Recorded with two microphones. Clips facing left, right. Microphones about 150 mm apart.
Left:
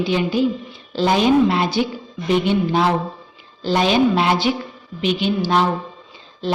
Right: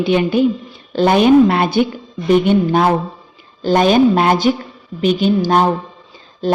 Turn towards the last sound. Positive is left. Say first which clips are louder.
# right 5 dB
turn(degrees=-45)  # may be behind; listen again after turning